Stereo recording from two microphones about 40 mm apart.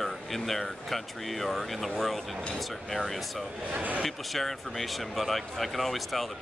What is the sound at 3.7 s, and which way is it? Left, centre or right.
Speech, right.